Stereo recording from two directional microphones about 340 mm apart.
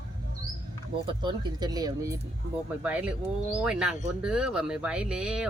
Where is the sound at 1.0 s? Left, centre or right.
Centre.